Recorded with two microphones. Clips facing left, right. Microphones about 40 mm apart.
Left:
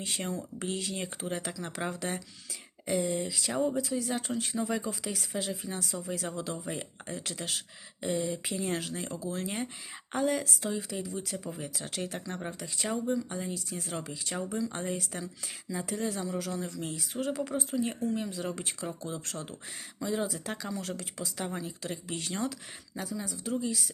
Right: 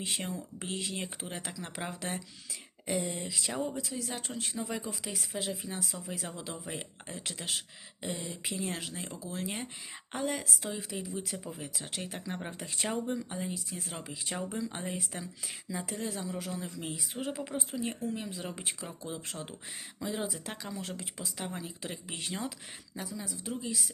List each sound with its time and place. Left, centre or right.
0.0 s speech: centre
12.5 s speech: right
13.3 s speech: centre
14.1 s speech: centre
17.7 s speech: centre